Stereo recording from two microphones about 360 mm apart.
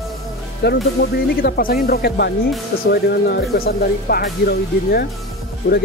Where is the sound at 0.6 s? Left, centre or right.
Left.